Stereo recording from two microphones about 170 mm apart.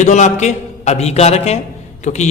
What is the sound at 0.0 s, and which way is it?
A man's voice, 45° left (ahead or behind).